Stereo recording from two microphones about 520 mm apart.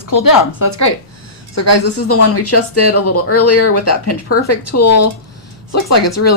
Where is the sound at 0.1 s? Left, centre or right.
Left.